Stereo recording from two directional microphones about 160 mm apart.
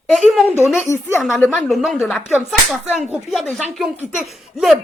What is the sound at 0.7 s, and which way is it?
Speech, 15° left (ahead or behind).